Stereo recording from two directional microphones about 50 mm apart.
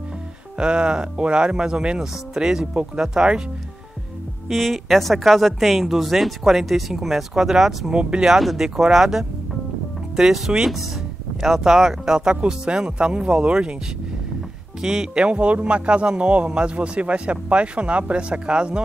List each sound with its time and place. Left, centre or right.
0.6 s speech: centre
4.5 s speech: centre
7.9 s speech: centre
8.4 s speech: centre
14.8 s speech: centre
15.2 s a man's voice: right